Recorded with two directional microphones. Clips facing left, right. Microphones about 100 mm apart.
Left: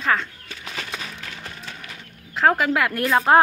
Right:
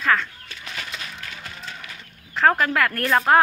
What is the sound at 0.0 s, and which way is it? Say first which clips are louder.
Speech: right 1 dB; 25° left (ahead or behind).